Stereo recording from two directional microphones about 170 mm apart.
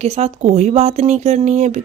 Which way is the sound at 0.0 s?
40° right (ahead or behind).